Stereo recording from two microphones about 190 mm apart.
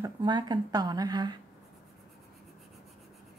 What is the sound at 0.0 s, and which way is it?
Speech, 25° right (ahead or behind).